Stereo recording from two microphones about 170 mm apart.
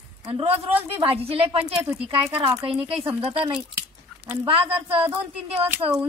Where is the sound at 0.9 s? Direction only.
30° right (ahead or behind).